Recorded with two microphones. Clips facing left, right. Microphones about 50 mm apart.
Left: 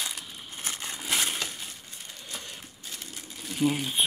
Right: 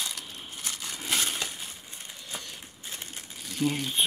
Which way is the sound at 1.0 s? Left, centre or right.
Centre.